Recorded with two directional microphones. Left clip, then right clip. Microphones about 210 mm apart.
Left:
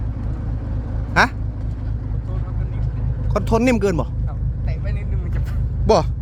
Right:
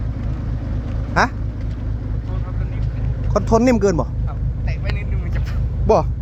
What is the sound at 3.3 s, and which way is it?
Speech, 15° left (ahead or behind).